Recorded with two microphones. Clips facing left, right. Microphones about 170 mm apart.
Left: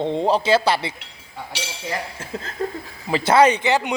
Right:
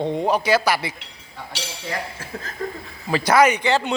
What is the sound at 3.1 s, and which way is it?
Speech, 25° left (ahead or behind).